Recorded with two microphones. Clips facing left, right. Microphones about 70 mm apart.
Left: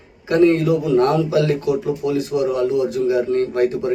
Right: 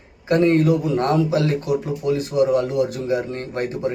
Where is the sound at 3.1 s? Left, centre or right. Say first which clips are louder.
Left 6 dB; right.